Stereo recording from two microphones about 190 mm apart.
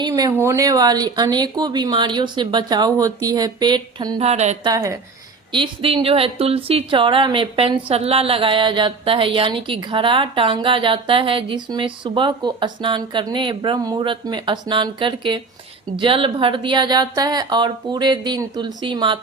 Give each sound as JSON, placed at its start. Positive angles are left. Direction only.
{"t": 0.0, "sound": "a woman's voice", "side_deg": -20}
{"t": 4.2, "sound": "a woman's voice", "side_deg": -35}
{"t": 4.6, "sound": "a woman's voice", "side_deg": -15}